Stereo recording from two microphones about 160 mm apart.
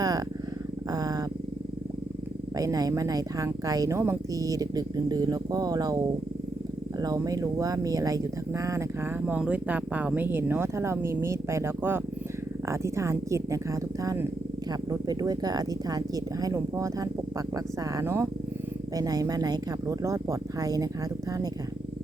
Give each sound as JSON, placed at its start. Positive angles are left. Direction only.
{"t": 0.0, "sound": "purr", "side_deg": -25}
{"t": 0.9, "sound": "dog", "side_deg": -25}
{"t": 2.6, "sound": "speech", "side_deg": -25}
{"t": 7.0, "sound": "speech", "side_deg": -20}
{"t": 9.2, "sound": "speech", "side_deg": -5}